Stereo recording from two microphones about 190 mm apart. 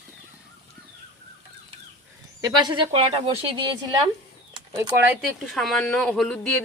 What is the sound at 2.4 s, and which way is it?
Speech, 25° right (ahead or behind).